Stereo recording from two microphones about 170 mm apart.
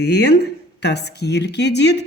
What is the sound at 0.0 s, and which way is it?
A woman's voice, 80° left.